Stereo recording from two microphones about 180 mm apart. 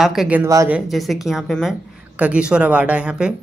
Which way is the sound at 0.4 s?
15° right (ahead or behind).